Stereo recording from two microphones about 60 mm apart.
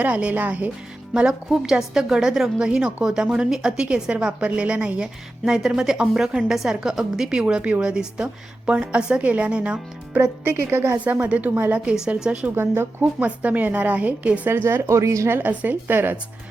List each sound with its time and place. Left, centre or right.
0.0 s a woman's voice: right
1.1 s a woman's voice: centre
5.5 s a woman's voice: centre
10.2 s a woman's voice: right
10.9 s a woman's voice: right
11.9 s a woman's voice: centre
12.5 s speech: right
13.1 s a woman's voice: right
14.5 s speech: right
15.3 s a woman's voice: right